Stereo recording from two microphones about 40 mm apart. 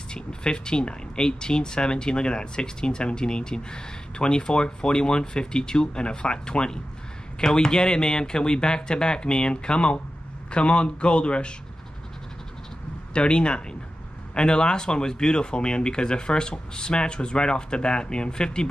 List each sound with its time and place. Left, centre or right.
0.1 s speech: left
13.1 s speech: left